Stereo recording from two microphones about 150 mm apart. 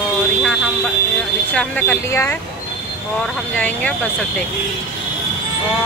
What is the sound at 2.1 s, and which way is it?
Speech, 20° left (ahead or behind).